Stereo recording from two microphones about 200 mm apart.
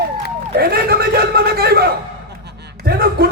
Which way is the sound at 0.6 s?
50° right (ahead or behind).